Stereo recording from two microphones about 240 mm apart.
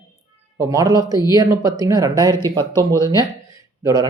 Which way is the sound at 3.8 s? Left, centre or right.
Centre.